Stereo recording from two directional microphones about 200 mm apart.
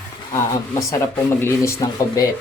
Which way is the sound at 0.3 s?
15° left (ahead or behind).